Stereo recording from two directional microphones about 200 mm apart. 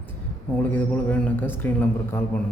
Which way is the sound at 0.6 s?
10° left (ahead or behind).